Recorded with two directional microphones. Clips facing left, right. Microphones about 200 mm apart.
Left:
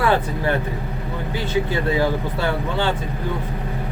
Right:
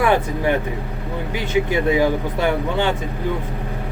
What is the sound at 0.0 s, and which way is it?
Speech, 15° right (ahead or behind).